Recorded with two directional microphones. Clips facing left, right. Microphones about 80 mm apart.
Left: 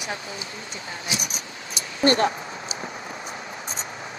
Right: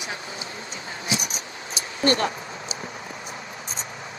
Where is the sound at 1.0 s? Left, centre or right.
Right.